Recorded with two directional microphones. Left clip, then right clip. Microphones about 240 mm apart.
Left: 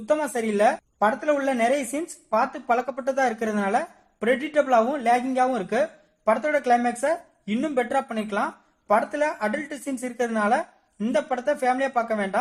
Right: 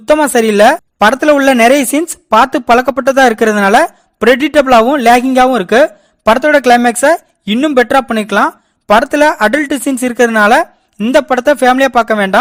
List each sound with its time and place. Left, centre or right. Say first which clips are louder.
0.1 s a woman's voice: right 15 dB; right
2.0 s a woman's voice: right 15 dB; right
3.5 s a woman's voice: right 16 dB; right
10.1 s a woman's voice: right 15 dB; right
11.7 s a woman's voice: right 14 dB; right
11.9 s speech: right 15 dB; right